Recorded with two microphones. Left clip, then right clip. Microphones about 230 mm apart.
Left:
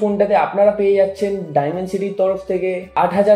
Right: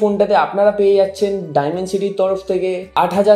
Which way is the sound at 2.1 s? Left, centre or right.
Right.